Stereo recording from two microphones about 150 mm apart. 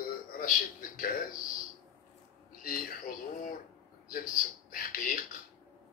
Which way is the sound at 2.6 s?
75° left (ahead or behind).